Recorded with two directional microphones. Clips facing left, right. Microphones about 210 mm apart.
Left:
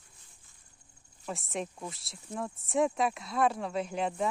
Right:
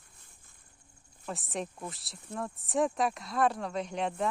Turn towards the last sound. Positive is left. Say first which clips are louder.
# left 1 dB
turn(degrees=0)  # may be behind; listen again after turning